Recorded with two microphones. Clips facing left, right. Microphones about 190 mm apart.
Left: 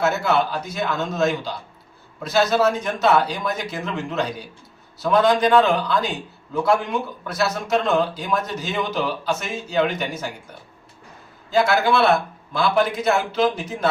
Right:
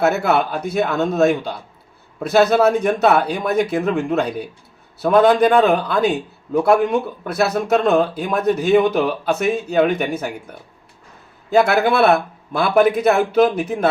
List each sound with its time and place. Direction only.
0.0 s speech: 60° right (ahead or behind)
11.5 s speech: 60° right (ahead or behind)